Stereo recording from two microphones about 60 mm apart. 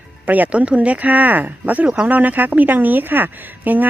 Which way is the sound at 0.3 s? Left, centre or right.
Right.